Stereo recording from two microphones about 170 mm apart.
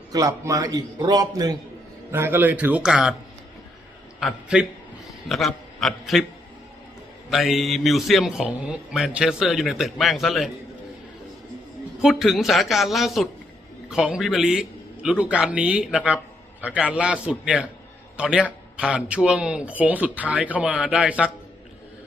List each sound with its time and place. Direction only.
0.1 s a man's voice: 20° right (ahead or behind); by 3.2 s 5° right (ahead or behind)
4.2 s a man's voice: 5° right (ahead or behind)
7.3 s a man's voice: centre (ahead or behind)
12.0 s a man's voice: centre (ahead or behind)